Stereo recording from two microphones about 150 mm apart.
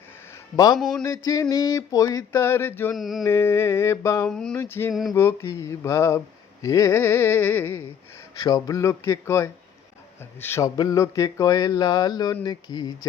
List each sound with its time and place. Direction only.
0.5 s speech: 25° left (ahead or behind)
0.8 s mantra: centre (ahead or behind)
1.0 s speech: 20° left (ahead or behind)
2.9 s mantra: centre (ahead or behind)
3.2 s speech: 15° left (ahead or behind)
4.3 s mantra: 5° left (ahead or behind)
4.5 s speech: 15° left (ahead or behind)